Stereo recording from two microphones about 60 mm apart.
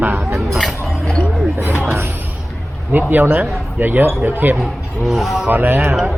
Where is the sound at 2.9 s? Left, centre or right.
Right.